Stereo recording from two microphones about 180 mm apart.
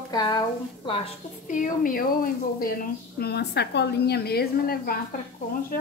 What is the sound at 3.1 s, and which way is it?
A woman's voice, 65° left (ahead or behind).